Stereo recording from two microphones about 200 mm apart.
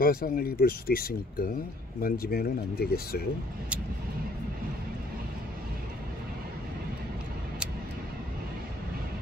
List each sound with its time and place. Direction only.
0.0 s speech: 45° left (ahead or behind)